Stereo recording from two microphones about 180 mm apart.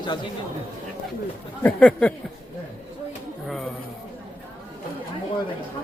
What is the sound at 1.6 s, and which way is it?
Speech, 5° left (ahead or behind).